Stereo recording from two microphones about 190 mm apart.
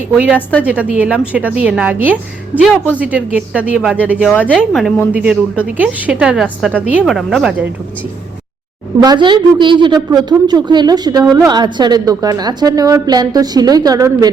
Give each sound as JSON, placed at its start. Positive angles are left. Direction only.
{"t": 0.1, "sound": "a woman's voice", "side_deg": -5}
{"t": 4.3, "sound": "a woman's voice", "side_deg": 10}
{"t": 9.0, "sound": "a woman's voice", "side_deg": -20}